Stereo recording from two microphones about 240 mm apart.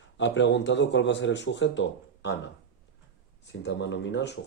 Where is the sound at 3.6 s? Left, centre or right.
Left.